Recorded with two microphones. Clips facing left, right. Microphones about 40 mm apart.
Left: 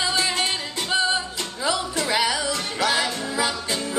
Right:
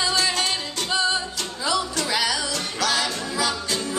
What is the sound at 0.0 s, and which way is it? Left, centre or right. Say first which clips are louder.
Music: even; centre.